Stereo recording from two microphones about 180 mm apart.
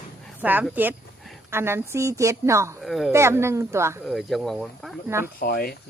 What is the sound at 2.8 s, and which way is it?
Speech, centre (ahead or behind).